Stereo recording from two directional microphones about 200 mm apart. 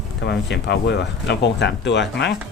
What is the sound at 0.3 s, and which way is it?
Speech, 55° left (ahead or behind).